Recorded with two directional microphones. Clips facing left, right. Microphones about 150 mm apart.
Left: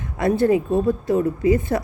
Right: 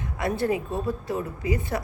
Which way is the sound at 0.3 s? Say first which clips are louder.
Left 9 dB; 25° left (ahead or behind).